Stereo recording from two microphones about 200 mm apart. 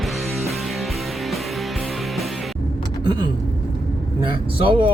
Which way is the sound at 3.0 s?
20° right (ahead or behind).